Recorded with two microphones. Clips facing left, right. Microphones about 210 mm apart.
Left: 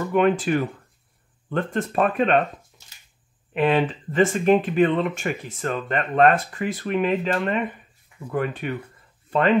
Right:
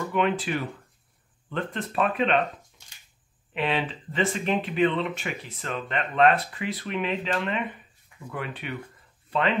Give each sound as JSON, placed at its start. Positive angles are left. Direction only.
{"t": 0.1, "sound": "speech", "side_deg": 45}
{"t": 3.5, "sound": "speech", "side_deg": 45}